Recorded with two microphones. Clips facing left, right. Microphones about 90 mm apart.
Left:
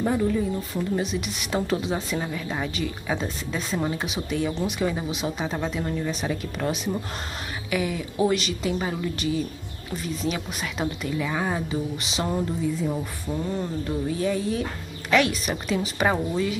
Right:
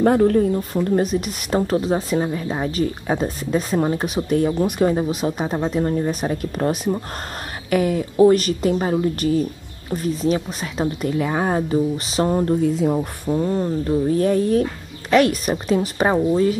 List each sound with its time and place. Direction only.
0.0 s speech: 60° right (ahead or behind); by 2.2 s 40° right (ahead or behind)
2.2 s speech: 30° right (ahead or behind)
7.7 s speech: 45° right (ahead or behind)
12.4 s speech: 60° right (ahead or behind)
12.9 s a sound: 30° right (ahead or behind)
13.5 s speech: 35° right (ahead or behind)
14.1 s speech: 45° right (ahead or behind)